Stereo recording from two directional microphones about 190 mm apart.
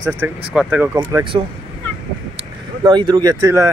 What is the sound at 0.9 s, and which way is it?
Speech, 20° right (ahead or behind).